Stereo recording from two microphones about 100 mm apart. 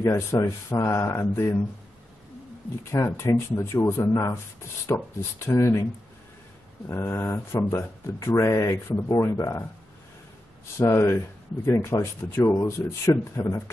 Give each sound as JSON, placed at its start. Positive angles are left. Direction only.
{"t": 0.0, "sound": "speech", "side_deg": 30}
{"t": 2.8, "sound": "speech", "side_deg": 30}
{"t": 6.9, "sound": "speech", "side_deg": 25}
{"t": 10.8, "sound": "speech", "side_deg": 25}